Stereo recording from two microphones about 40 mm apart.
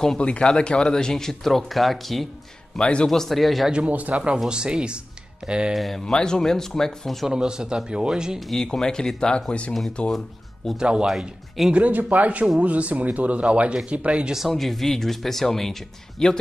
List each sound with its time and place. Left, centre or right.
0.2 s speech: left; by 2.2 s centre
2.8 s speech: left
3.1 s speech: centre
3.9 s speech: right
4.5 s speech: right
5.7 s speech: centre
6.0 s speech: centre
7.2 s speech: centre
8.5 s speech: centre
10.8 s speech: right
11.1 s speech: centre
11.7 s speech: right
14.5 s speech: centre
16.2 s speech: centre